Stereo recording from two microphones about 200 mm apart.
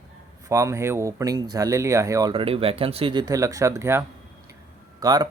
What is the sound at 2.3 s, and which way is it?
Speech, 25° right (ahead or behind).